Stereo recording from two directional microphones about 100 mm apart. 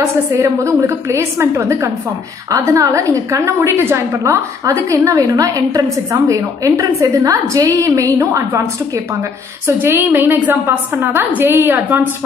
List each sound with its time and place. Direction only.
0.0 s a woman's voice: 30° right (ahead or behind)